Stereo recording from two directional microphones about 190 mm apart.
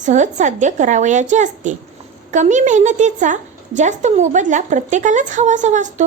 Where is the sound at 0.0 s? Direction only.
40° right (ahead or behind).